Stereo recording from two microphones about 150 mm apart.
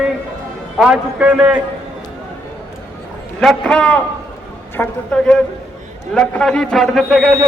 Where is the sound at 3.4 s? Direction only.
5° left (ahead or behind).